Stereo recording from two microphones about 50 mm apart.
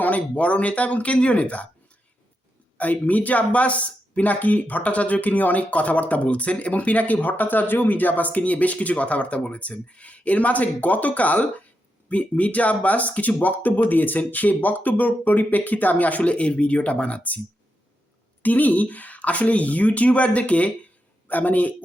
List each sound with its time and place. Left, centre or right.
0.0 s speech: left
2.7 s speech: left
18.4 s speech: left